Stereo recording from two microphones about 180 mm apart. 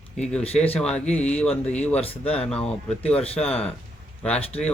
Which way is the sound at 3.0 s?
35° left (ahead or behind).